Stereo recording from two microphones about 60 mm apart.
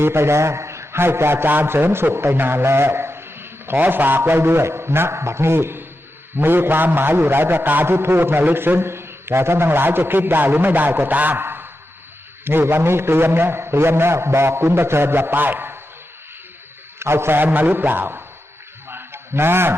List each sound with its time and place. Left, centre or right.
0.0 s a man's voice: right
17.0 s a man's voice: right
18.9 s a sound: right